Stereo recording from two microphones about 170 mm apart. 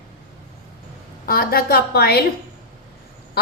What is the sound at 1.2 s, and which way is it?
A woman's voice, 60° left (ahead or behind).